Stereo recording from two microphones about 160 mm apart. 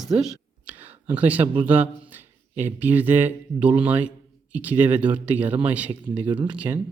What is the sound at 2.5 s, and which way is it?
Speech, 10° right (ahead or behind).